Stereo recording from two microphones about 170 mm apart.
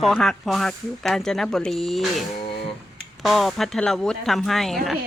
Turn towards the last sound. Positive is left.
turn(degrees=0)  # may be behind; listen again after turning